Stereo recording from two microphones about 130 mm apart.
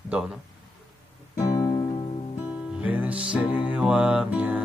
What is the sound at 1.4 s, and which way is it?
Music, 25° left (ahead or behind).